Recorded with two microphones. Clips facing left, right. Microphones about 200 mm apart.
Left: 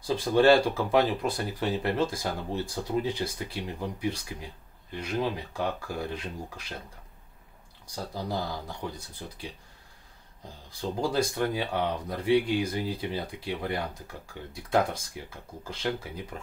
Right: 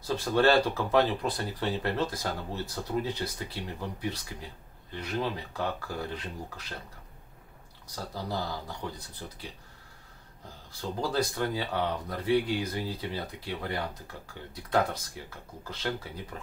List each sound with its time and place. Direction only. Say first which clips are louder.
0.0 s speech: left 3 dB; 15° left (ahead or behind)
7.9 s speech: left 2 dB; 15° left (ahead or behind)
10.8 s speech: left 2 dB; 15° left (ahead or behind)